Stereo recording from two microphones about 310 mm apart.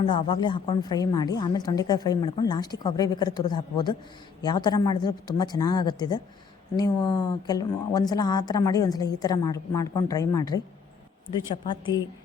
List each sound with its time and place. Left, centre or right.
0.0 s a woman's voice: centre